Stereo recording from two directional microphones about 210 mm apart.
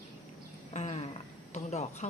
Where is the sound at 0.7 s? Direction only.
35° left (ahead or behind).